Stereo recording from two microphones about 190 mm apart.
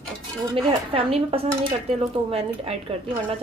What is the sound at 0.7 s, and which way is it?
Speech, 30° right (ahead or behind).